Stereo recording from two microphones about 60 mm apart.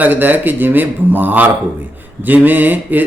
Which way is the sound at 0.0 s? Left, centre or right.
Right.